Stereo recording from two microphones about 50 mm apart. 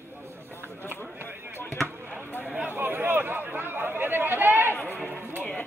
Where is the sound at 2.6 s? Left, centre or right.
Right.